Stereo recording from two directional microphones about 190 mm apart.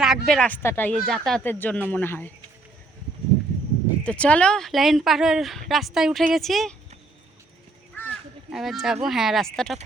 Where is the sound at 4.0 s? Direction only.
5° left (ahead or behind).